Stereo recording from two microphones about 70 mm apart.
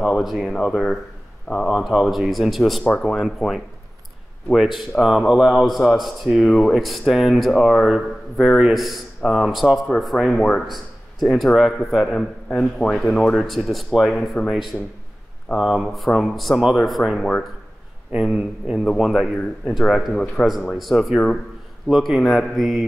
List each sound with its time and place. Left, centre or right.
0.0 s speech: centre
1.5 s speech: left
1.8 s speech: centre
4.7 s speech: centre
15.5 s speech: centre
17.2 s speech: centre
18.2 s speech: centre